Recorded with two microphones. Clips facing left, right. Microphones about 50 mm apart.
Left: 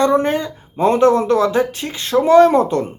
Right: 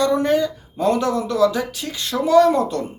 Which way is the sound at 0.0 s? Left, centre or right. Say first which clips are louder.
Left 2 dB; left.